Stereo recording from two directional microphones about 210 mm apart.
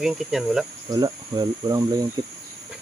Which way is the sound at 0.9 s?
20° right (ahead or behind).